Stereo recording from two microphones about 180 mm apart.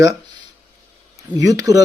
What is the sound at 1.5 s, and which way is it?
Speech, 20° right (ahead or behind).